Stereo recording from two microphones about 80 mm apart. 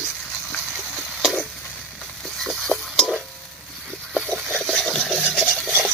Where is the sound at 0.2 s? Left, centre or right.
Centre.